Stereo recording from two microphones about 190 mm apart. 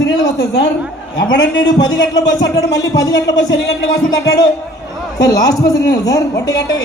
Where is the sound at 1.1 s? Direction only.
80° left.